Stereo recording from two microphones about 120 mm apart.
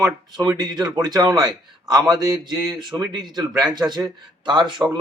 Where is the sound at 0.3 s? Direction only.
35° right (ahead or behind).